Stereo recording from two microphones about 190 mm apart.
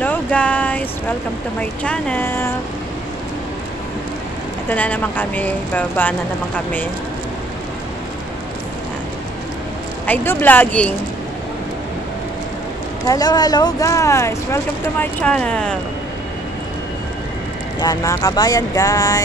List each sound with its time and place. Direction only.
0.0 s a sound: 5° left (ahead or behind)
1.6 s speech: 5° left (ahead or behind)
4.6 s speech: 10° left (ahead or behind)
10.0 s speech: 10° left (ahead or behind)
13.0 s speech: 20° left (ahead or behind)
17.7 s speech: 20° left (ahead or behind)